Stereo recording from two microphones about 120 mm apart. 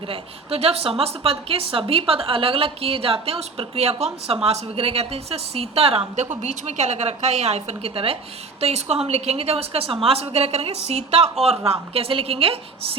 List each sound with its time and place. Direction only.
0.1 s a woman's voice: 55° right (ahead or behind)